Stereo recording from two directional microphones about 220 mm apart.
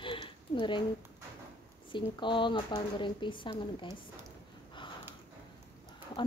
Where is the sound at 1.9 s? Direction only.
20° left (ahead or behind).